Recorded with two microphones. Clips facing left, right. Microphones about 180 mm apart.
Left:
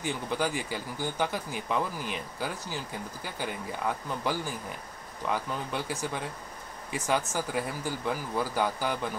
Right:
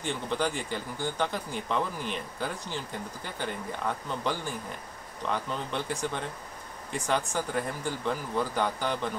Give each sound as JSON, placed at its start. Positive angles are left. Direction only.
{"t": 0.0, "sound": "speech", "side_deg": 5}